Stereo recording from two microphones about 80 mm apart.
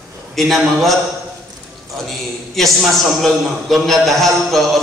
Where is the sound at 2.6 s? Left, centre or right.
Centre.